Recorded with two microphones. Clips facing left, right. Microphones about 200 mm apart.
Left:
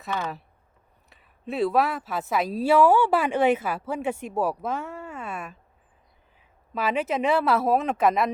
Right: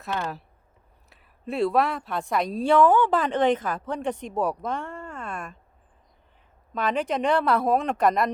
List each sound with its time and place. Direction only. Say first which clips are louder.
0.1 s speech: even; 5° left (ahead or behind)
6.7 s speech: even; 5° left (ahead or behind)